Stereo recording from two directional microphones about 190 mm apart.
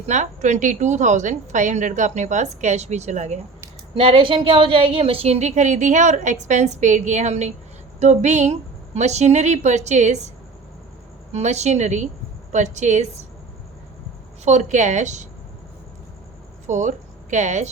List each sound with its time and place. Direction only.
0.1 s a woman's voice: 40° right (ahead or behind)
14.4 s a woman's voice: 40° right (ahead or behind)
16.6 s speech: 40° right (ahead or behind)